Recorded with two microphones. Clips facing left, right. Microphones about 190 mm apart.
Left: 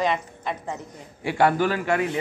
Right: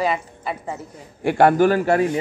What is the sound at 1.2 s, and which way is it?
Speech, 55° right (ahead or behind).